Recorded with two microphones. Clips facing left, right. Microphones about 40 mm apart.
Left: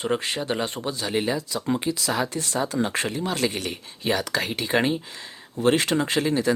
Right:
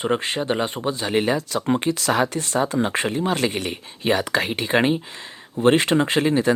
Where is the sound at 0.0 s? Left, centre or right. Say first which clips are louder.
Right 3 dB; right.